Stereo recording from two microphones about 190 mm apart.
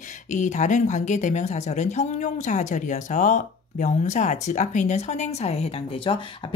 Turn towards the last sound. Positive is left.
turn(degrees=25)  # may be behind; listen again after turning